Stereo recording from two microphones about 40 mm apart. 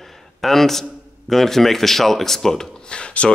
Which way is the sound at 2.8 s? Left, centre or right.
Left.